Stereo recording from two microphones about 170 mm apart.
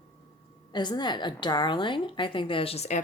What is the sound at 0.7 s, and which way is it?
A woman's voice, 25° left (ahead or behind).